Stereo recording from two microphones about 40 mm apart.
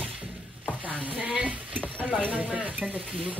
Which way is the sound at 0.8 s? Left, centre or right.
Right.